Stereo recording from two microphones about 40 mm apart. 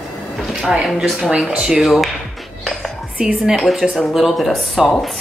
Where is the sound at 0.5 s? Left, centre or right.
Centre.